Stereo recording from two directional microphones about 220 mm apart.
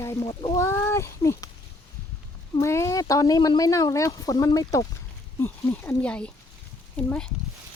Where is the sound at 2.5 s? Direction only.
15° left (ahead or behind).